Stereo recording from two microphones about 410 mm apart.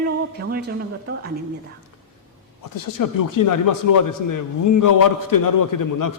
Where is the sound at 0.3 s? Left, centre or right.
Right.